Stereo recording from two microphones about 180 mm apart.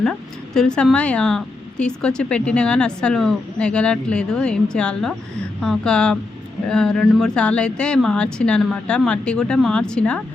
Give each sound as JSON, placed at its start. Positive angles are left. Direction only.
{"t": 0.0, "sound": "speech", "side_deg": 5}